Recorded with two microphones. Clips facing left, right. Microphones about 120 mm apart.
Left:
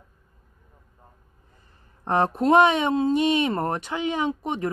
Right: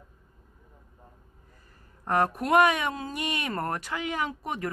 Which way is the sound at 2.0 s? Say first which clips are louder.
Left 5 dB; 25° left (ahead or behind).